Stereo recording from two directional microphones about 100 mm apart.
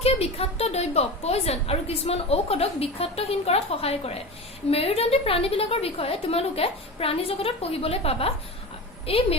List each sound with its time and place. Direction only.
0.0 s a woman's voice: 85° left
9.0 s a woman's voice: 75° left (ahead or behind)